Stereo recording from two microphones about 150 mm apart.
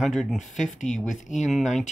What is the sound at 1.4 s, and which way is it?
Speech, centre (ahead or behind).